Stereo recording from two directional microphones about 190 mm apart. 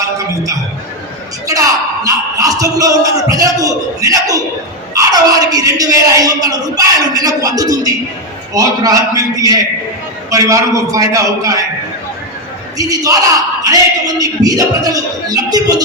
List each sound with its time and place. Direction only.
1.5 s a man's voice: 20° right (ahead or behind)
12.7 s speech: 20° right (ahead or behind)